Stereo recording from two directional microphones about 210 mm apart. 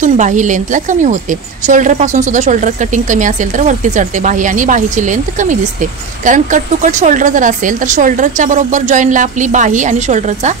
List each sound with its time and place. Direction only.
0.0 s a woman's voice: 35° right (ahead or behind)